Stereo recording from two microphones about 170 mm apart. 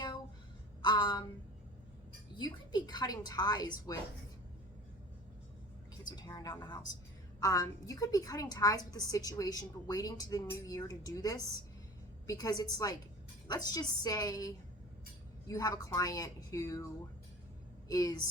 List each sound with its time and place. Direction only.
0.8 s a sound: 25° left (ahead or behind)
2.3 s a woman's voice: 25° left (ahead or behind)
6.1 s a woman's voice: 25° left (ahead or behind)